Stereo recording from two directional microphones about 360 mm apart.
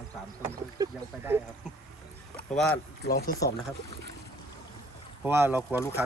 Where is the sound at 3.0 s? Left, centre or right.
Left.